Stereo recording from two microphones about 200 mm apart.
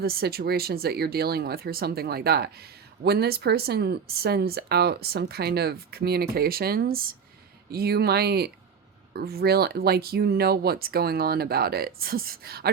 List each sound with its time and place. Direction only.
0.0 s speech: 50° right (ahead or behind)